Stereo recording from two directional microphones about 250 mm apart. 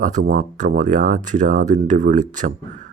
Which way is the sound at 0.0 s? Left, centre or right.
Right.